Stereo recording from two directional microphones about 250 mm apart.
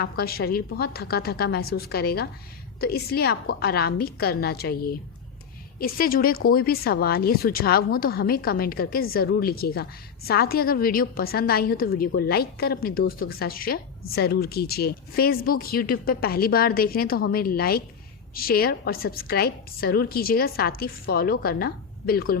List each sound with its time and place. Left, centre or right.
0.0 s a woman's voice: left